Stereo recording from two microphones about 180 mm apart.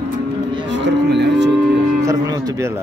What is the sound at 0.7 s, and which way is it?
Cattle, 75° right (ahead or behind).